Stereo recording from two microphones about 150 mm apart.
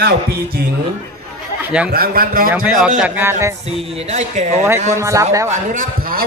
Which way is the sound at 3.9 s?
45° right (ahead or behind).